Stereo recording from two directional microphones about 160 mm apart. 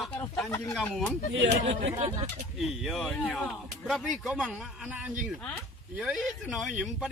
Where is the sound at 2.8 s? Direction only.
Centre (ahead or behind).